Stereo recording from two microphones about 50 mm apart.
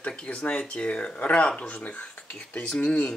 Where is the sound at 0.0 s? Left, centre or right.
Left.